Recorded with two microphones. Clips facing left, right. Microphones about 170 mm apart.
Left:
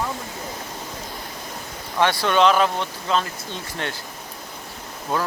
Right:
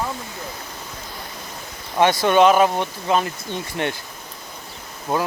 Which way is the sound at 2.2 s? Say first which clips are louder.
Right 3 dB; 15° right (ahead or behind).